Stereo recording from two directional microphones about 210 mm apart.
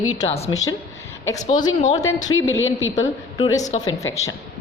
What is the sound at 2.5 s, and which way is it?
Speech, 70° left (ahead or behind).